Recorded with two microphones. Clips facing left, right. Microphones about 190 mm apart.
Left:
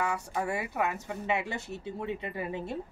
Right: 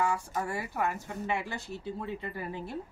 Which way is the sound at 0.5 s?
20° left (ahead or behind).